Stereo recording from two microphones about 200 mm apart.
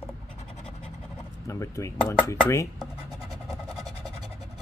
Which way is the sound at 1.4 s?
15° left (ahead or behind).